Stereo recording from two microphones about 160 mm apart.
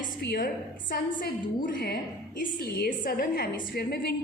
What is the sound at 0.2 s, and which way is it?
A woman's voice, 80° left.